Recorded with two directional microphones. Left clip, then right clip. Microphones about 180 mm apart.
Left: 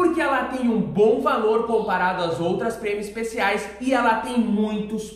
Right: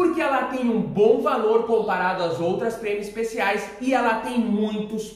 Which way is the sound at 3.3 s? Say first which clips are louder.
Left 2 dB; 20° left (ahead or behind).